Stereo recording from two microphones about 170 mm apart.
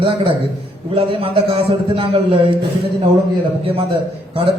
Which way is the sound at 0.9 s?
30° right (ahead or behind).